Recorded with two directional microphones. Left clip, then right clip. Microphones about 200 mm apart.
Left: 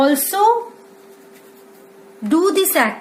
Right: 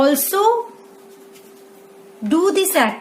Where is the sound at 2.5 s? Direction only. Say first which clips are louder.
Left 1 dB; 40° right (ahead or behind).